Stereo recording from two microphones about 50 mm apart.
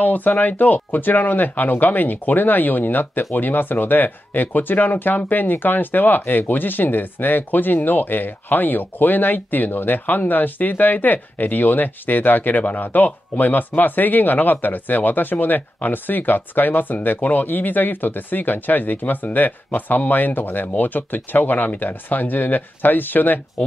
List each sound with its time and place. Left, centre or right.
0.0 s speech: left